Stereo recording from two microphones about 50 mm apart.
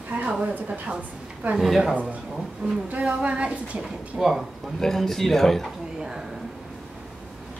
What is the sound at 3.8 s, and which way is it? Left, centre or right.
Speech, centre.